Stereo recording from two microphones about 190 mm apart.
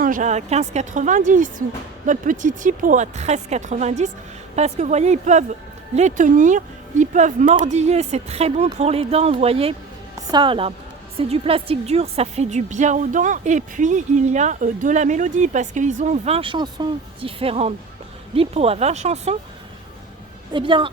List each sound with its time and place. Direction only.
0.0 s a woman's voice: 45° right (ahead or behind)
20.5 s a woman's voice: 25° right (ahead or behind)